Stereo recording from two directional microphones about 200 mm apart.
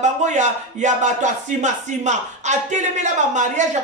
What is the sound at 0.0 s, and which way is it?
Speech, 35° right (ahead or behind).